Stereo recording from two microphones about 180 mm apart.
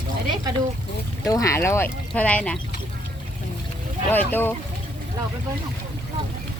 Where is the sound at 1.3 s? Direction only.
15° left (ahead or behind).